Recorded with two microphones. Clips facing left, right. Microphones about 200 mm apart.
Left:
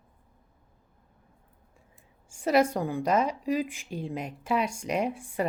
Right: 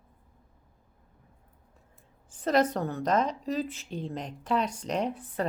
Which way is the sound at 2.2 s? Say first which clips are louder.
Left 2 dB; 10° left (ahead or behind).